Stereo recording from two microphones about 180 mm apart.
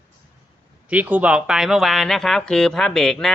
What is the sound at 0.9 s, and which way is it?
Speech, 10° right (ahead or behind).